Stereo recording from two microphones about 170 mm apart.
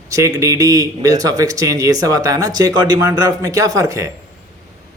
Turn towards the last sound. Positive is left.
turn(degrees=-20)  # may be behind; listen again after turning